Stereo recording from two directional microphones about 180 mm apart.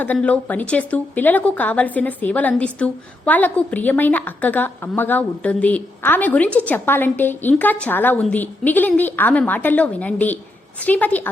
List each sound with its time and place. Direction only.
0.0 s a woman's voice: 10° left (ahead or behind)